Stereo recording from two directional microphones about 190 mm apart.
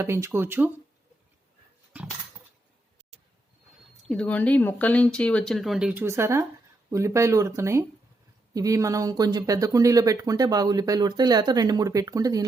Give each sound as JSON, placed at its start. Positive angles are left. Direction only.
{"t": 0.0, "sound": "speech", "side_deg": -15}
{"t": 1.9, "sound": "a sound", "side_deg": -5}
{"t": 4.0, "sound": "speech", "side_deg": 5}